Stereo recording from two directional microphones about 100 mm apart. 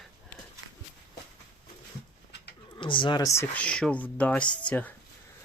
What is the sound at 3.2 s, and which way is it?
Speech, 30° left (ahead or behind).